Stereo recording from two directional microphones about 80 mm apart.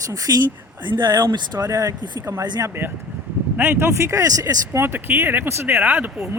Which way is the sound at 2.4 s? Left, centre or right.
Right.